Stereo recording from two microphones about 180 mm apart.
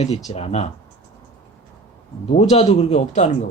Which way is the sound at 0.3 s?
35° left (ahead or behind).